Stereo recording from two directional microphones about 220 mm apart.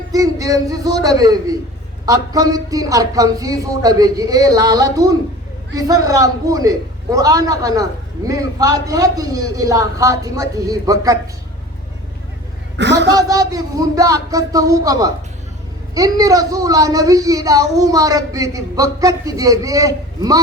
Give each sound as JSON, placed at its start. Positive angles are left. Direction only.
{"t": 0.1, "sound": "a man's voice", "side_deg": -15}
{"t": 12.7, "sound": "a woman's voice", "side_deg": -55}
{"t": 13.1, "sound": "a man's voice", "side_deg": -15}